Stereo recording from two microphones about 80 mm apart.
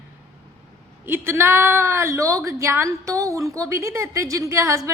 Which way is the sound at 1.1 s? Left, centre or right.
Right.